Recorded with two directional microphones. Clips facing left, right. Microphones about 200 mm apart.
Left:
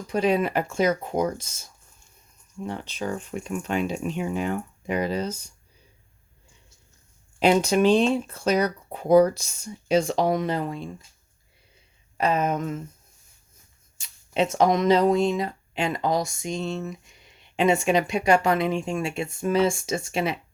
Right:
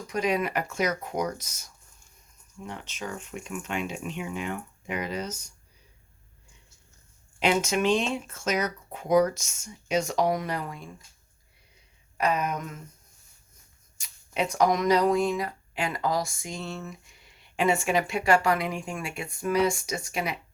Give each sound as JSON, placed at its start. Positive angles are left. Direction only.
{"t": 0.1, "sound": "speech", "side_deg": 30}
{"t": 7.3, "sound": "speech", "side_deg": 35}
{"t": 12.1, "sound": "speech", "side_deg": 25}
{"t": 14.0, "sound": "speech", "side_deg": 25}